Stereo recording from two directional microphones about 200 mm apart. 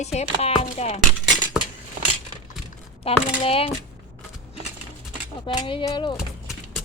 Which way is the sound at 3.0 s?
30° left (ahead or behind).